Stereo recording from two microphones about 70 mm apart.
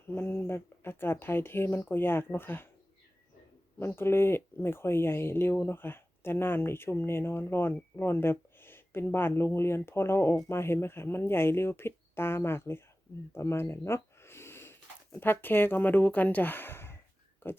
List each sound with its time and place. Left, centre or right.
0.1 s speech: left
3.8 s speech: left